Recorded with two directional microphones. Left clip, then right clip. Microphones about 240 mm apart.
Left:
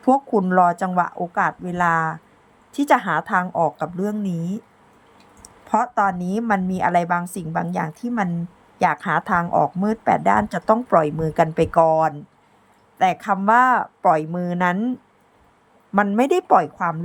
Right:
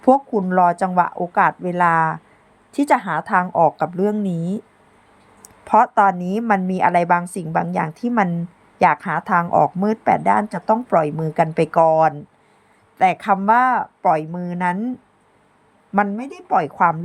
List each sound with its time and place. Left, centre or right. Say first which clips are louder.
0.0 s a woman's voice: right 2 dB; centre
5.6 s a woman's voice: right 5 dB; centre
16.1 s a woman's voice: left 4 dB; centre